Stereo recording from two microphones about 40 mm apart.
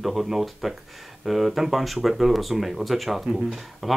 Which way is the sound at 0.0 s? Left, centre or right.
Centre.